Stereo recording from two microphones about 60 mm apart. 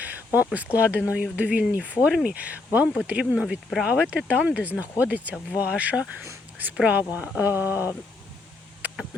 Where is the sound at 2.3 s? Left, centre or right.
Right.